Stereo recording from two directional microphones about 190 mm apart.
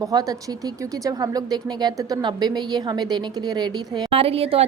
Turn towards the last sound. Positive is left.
turn(degrees=-30)  # may be behind; listen again after turning